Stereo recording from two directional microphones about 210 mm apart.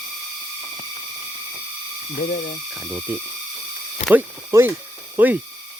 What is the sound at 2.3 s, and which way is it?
Speech, 40° left (ahead or behind).